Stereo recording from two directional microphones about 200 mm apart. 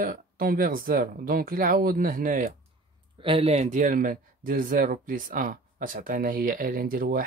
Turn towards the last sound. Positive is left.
turn(degrees=-45)  # may be behind; listen again after turning